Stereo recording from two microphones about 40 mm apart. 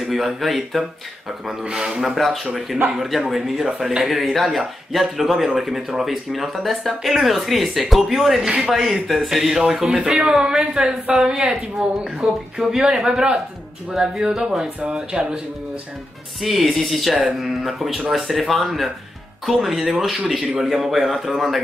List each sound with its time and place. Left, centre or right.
0.0 s speech: centre
1.5 s a woman's voice: centre
2.1 s speech: centre
8.5 s a woman's voice: centre
9.0 s a woman's voice: centre
9.8 s a woman's voice: right
16.3 s a woman's voice: centre